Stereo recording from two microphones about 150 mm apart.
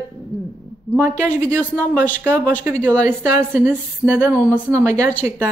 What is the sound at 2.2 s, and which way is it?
A woman's voice, 15° right (ahead or behind).